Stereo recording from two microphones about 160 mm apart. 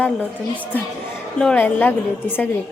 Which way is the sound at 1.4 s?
5° left (ahead or behind).